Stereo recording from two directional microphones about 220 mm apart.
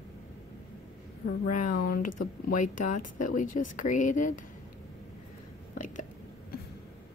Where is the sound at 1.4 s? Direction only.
35° left (ahead or behind).